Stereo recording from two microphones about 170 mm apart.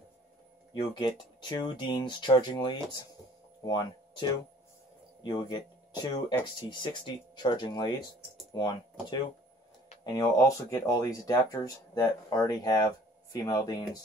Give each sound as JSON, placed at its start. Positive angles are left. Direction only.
{"t": 0.7, "sound": "speech", "side_deg": 25}
{"t": 10.0, "sound": "speech", "side_deg": 20}